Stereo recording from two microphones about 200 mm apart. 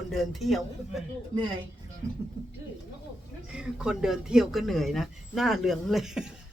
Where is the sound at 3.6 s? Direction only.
5° right (ahead or behind).